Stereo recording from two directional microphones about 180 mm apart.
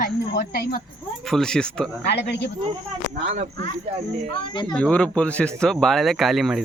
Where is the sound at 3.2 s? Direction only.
40° right (ahead or behind).